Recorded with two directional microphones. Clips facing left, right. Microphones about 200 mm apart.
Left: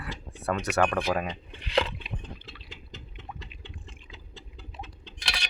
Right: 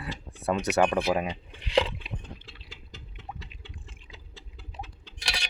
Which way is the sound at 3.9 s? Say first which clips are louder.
Left 2 dB; 15° left (ahead or behind).